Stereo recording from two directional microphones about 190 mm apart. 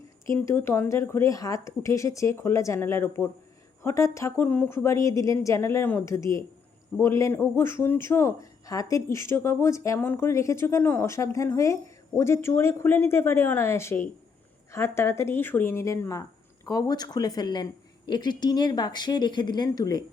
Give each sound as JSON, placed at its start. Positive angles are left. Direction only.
{"t": 0.3, "sound": "a man's voice", "side_deg": 15}